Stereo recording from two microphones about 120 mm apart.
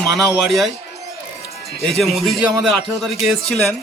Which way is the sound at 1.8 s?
Centre (ahead or behind).